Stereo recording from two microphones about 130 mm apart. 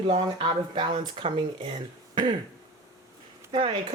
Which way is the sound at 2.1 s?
35° right (ahead or behind).